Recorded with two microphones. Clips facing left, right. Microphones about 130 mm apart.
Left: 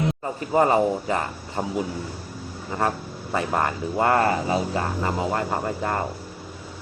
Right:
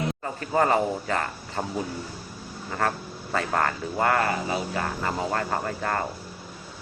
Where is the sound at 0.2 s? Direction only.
20° left (ahead or behind).